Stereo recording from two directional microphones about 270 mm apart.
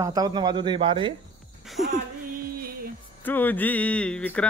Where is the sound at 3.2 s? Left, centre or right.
Centre.